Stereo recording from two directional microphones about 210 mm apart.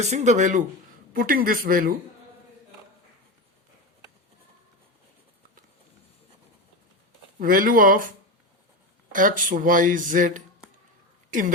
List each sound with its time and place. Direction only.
0.0 s speech: 35° right (ahead or behind)
7.3 s speech: 40° right (ahead or behind)
9.1 s speech: 40° right (ahead or behind)